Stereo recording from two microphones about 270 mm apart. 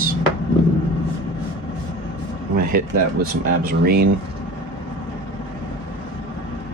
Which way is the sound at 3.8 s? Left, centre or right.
Right.